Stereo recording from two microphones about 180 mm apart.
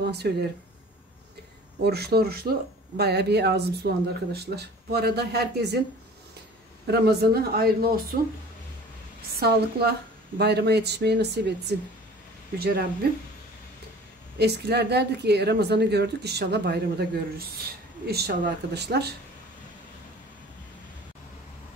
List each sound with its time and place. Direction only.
0.0 s speech: 65° right (ahead or behind)
1.8 s speech: 65° right (ahead or behind)
6.9 s speech: 60° right (ahead or behind)
9.4 s speech: 65° right (ahead or behind)
12.5 s speech: 60° right (ahead or behind)
14.4 s speech: 65° right (ahead or behind)